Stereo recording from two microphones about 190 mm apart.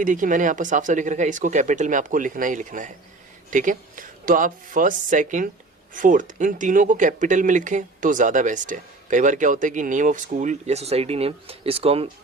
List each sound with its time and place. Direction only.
0.0 s speech: 45° right (ahead or behind)